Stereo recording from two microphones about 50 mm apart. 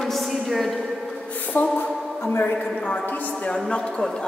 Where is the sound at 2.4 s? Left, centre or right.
Left.